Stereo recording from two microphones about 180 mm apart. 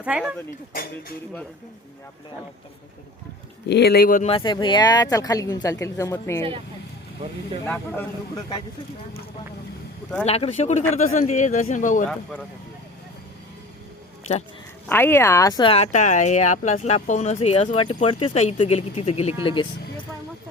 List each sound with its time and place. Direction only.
0.0 s speech: 5° right (ahead or behind)
0.7 s a man's voice: 55° left (ahead or behind)
3.7 s speech: 65° left (ahead or behind); by 4.3 s 50° left (ahead or behind)
4.3 s speech: 25° left (ahead or behind)
7.6 s speech: 10° left (ahead or behind)
10.2 s a man's voice: 35° left (ahead or behind)
14.8 s speech: 10° left (ahead or behind); by 19.6 s 30° left (ahead or behind)